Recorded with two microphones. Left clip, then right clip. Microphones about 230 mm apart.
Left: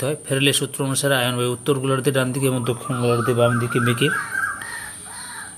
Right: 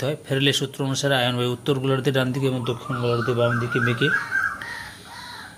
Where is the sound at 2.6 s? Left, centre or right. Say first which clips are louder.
Left 3 dB; centre.